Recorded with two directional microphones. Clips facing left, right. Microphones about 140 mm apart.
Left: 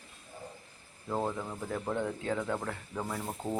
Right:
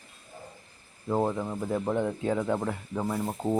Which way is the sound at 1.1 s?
20° right (ahead or behind).